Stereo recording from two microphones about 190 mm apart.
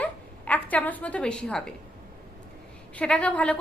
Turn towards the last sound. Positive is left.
turn(degrees=5)  # may be behind; listen again after turning